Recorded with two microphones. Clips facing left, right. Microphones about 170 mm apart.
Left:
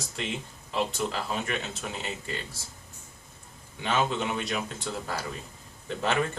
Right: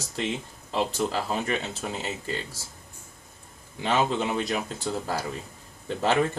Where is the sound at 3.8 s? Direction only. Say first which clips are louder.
Right 3 dB; 35° right (ahead or behind).